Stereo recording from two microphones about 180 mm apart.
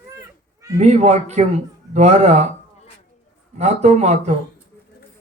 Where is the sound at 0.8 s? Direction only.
35° right (ahead or behind).